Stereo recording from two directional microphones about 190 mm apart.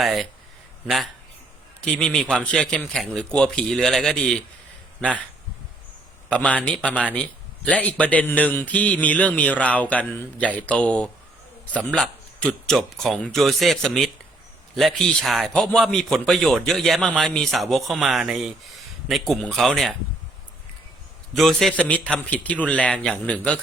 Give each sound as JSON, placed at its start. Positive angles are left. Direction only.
{"t": 0.0, "sound": "a man's voice", "side_deg": 0}
{"t": 1.8, "sound": "a man's voice", "side_deg": 5}
{"t": 6.2, "sound": "a man's voice", "side_deg": 5}
{"t": 21.3, "sound": "a man's voice", "side_deg": 0}